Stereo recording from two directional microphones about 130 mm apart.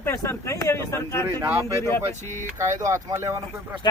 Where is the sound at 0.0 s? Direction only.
20° left (ahead or behind).